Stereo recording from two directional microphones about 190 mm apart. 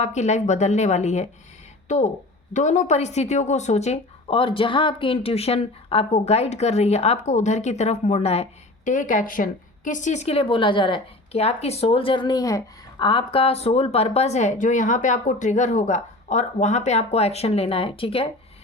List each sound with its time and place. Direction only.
0.0 s a woman's voice: 35° left (ahead or behind)
2.5 s a woman's voice: 40° left (ahead or behind)